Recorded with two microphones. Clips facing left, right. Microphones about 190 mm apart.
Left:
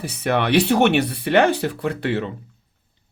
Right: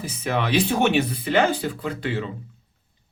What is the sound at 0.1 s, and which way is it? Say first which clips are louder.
Speech: left 5 dB; 65° left (ahead or behind).